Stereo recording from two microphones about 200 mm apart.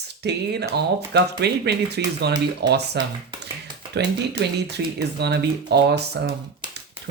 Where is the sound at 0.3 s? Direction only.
55° right (ahead or behind).